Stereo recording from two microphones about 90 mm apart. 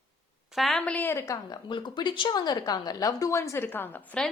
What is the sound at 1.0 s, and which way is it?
Speech, 35° left (ahead or behind).